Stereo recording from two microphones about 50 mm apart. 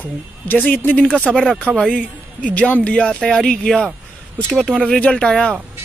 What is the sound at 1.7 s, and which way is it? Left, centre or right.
Speech, centre.